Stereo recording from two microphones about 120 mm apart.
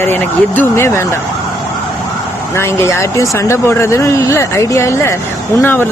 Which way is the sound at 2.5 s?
20° left (ahead or behind).